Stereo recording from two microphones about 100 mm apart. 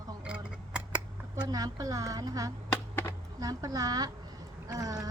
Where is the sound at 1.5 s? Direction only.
35° right (ahead or behind).